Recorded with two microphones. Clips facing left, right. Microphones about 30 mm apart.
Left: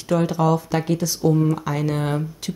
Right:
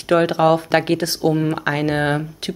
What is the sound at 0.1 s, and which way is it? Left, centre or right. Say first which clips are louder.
Speech: right 5 dB; right.